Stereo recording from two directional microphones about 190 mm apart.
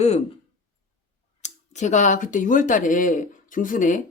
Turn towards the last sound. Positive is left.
turn(degrees=45)  # may be behind; listen again after turning